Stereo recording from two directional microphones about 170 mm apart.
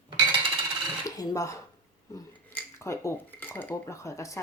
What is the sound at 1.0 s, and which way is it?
Speech, 20° left (ahead or behind).